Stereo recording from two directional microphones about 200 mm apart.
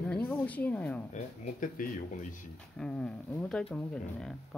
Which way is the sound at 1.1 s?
40° left (ahead or behind).